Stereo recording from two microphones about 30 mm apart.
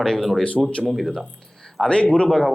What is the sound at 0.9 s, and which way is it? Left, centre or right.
Speech, centre.